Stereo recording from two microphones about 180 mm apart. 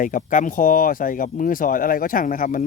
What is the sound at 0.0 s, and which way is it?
Speech, 45° left (ahead or behind).